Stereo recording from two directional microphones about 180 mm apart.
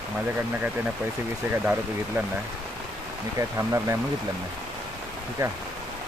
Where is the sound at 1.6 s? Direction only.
10° right (ahead or behind).